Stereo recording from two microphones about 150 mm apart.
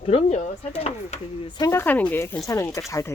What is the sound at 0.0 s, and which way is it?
Speech, 40° left (ahead or behind).